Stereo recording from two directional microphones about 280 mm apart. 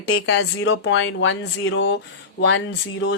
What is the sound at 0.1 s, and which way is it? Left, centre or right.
Speech, left.